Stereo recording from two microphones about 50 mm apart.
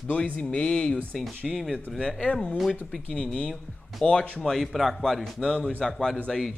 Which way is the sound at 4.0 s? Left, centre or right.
Left.